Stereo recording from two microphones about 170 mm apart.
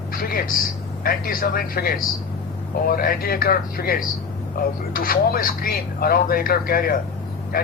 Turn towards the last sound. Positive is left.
turn(degrees=60)  # may be behind; listen again after turning